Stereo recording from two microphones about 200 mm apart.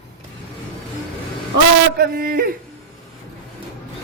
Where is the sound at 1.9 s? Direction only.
50° right (ahead or behind).